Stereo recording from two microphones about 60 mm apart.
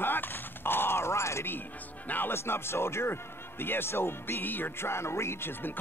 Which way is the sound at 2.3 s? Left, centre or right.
Left.